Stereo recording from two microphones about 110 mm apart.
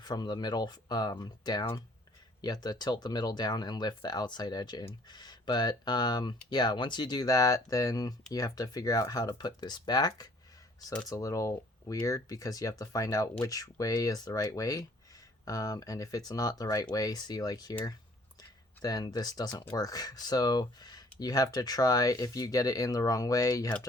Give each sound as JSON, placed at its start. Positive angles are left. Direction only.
{"t": 0.0, "sound": "speech", "side_deg": 40}